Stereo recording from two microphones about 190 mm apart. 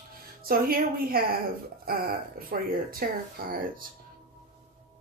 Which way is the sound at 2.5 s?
50° right (ahead or behind).